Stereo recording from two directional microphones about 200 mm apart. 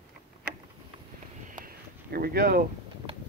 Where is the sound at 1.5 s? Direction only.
45° right (ahead or behind).